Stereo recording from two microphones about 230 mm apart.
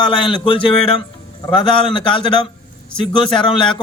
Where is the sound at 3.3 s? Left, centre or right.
Centre.